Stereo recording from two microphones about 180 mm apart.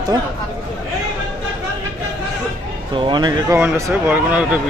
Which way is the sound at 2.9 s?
25° right (ahead or behind).